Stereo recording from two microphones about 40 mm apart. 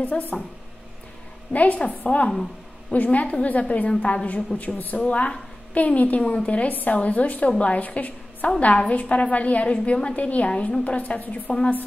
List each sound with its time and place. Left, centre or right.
0.3 s a woman's voice: left
1.5 s a woman's voice: left
4.6 s a woman's voice: left
4.9 s a woman's voice: left
7.4 s a woman's voice: left
11.1 s a woman's voice: left